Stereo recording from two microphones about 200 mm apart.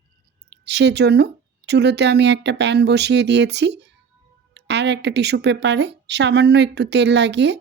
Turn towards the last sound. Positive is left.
turn(degrees=-60)  # may be behind; listen again after turning